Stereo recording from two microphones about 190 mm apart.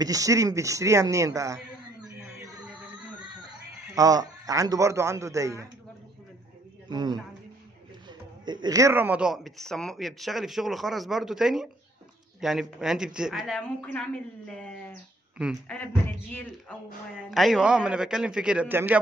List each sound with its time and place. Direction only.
0.0 s speech: 20° right (ahead or behind)
2.6 s a sound: 5° right (ahead or behind)
3.4 s a man's voice: 20° right (ahead or behind)
6.9 s a man's voice: 20° right (ahead or behind); by 14.7 s 5° left (ahead or behind)
15.7 s speech: 10° left (ahead or behind); by 18.9 s 10° right (ahead or behind)